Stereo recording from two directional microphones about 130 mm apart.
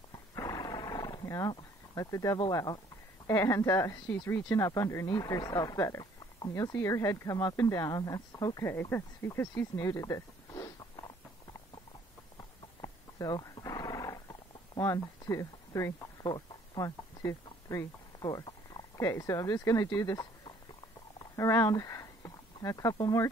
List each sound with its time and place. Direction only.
0.3 s wild animals: 30° left (ahead or behind)
3.3 s speech: 25° left (ahead or behind)
12.4 s wild animals: 30° left (ahead or behind)
14.8 s speech: 25° left (ahead or behind)